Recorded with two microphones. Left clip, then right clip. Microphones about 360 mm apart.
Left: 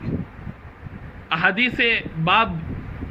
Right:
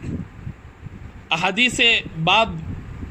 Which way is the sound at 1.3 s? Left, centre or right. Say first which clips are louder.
Even; centre.